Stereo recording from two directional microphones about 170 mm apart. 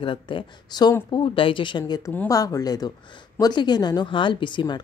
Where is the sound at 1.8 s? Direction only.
15° left (ahead or behind).